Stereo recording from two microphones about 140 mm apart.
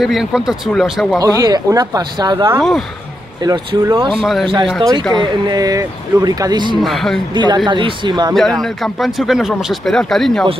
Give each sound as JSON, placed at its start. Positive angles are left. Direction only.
{"t": 0.0, "sound": "speech", "side_deg": 0}
{"t": 1.2, "sound": "speech", "side_deg": -25}
{"t": 4.1, "sound": "speech", "side_deg": 0}
{"t": 5.1, "sound": "speech", "side_deg": -30}
{"t": 6.8, "sound": "speech", "side_deg": 0}
{"t": 7.3, "sound": "speech", "side_deg": -35}
{"t": 8.4, "sound": "speech", "side_deg": 0}